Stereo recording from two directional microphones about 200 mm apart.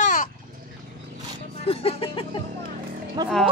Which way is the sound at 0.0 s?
40° left (ahead or behind).